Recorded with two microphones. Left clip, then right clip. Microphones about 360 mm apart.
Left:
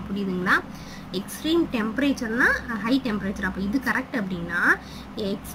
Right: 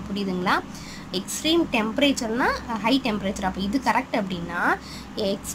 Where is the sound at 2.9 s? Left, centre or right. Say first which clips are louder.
Right 2 dB; right.